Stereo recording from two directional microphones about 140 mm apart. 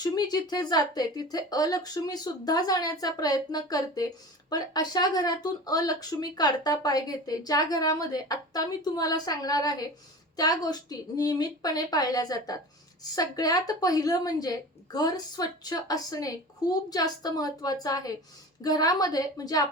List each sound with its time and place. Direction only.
0.0 s speech: 30° left (ahead or behind)